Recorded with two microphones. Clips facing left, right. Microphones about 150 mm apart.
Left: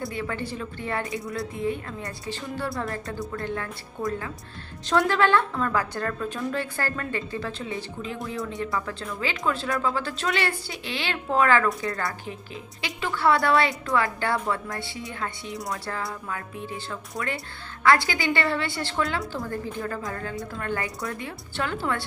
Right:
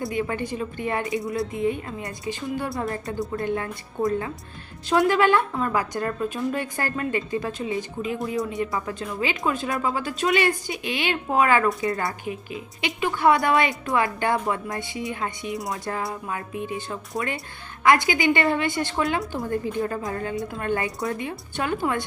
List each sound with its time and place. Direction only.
0.1 s a woman's voice: 15° right (ahead or behind)